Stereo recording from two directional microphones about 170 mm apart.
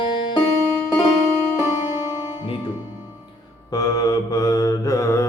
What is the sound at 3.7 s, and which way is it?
Mantra, 20° left (ahead or behind).